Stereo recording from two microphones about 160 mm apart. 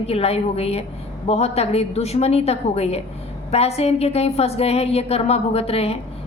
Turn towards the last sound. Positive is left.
turn(degrees=40)  # may be behind; listen again after turning